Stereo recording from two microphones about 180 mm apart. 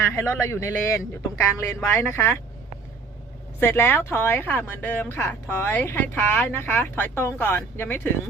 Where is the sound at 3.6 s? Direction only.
15° left (ahead or behind).